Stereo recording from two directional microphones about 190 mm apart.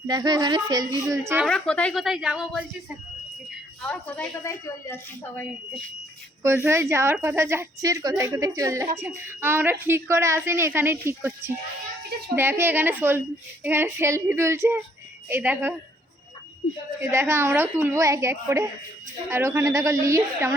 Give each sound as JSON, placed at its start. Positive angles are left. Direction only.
{"t": 0.1, "sound": "speech", "side_deg": -20}
{"t": 1.5, "sound": "speech", "side_deg": 5}
{"t": 3.8, "sound": "a woman's voice", "side_deg": 5}
{"t": 6.7, "sound": "a woman's voice", "side_deg": -15}
{"t": 17.0, "sound": "a woman's voice", "side_deg": -15}